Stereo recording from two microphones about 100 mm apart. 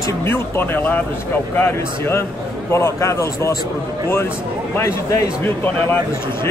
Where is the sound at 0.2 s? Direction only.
20° left (ahead or behind).